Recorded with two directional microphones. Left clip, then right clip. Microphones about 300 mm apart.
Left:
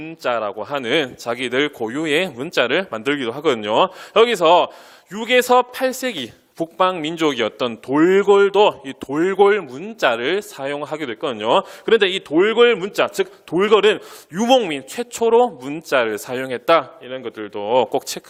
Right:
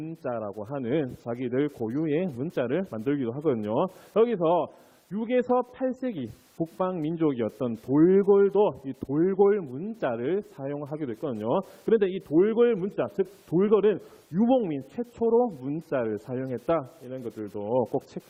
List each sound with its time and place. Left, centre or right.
0.2 s speech: centre
15.2 s speech: centre
17.6 s speech: left